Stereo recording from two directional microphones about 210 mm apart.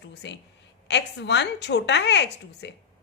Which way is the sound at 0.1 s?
55° left (ahead or behind).